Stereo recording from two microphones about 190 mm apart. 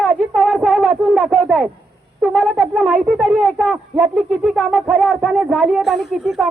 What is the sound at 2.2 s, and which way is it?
Speech, 5° right (ahead or behind).